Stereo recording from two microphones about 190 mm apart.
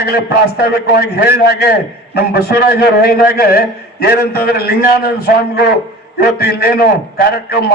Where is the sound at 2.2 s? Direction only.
55° left (ahead or behind).